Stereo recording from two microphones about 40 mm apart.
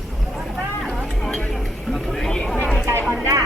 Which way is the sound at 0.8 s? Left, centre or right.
Centre.